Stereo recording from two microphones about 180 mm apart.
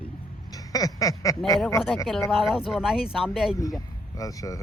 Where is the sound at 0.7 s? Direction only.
20° left (ahead or behind).